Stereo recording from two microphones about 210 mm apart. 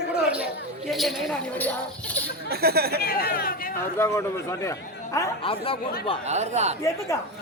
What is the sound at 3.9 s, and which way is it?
A man's voice, 15° left (ahead or behind).